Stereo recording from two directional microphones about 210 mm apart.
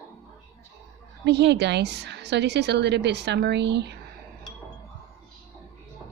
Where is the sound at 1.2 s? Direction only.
55° right (ahead or behind).